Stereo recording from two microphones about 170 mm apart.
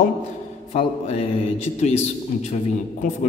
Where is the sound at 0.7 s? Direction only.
35° left (ahead or behind).